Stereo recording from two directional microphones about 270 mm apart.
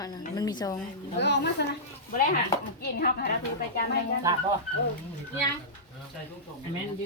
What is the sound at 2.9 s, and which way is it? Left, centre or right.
Speech, left.